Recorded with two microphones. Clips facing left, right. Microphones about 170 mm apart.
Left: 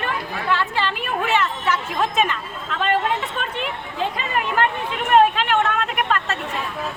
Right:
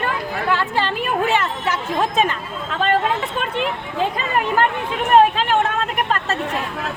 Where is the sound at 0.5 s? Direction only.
40° right (ahead or behind).